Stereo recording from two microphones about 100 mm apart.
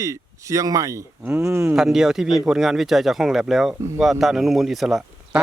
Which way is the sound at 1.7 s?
5° right (ahead or behind).